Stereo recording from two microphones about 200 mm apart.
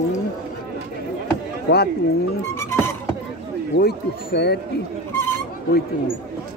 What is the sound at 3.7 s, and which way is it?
Speech, 55° left (ahead or behind).